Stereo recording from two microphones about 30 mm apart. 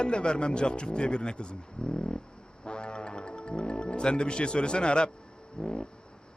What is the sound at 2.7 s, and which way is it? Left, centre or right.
Music, left.